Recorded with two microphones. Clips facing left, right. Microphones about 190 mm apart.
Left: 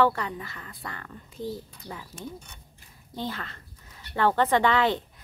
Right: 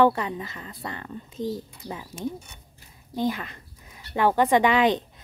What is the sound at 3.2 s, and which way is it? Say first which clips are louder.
Speech: right 7 dB; 15° right (ahead or behind).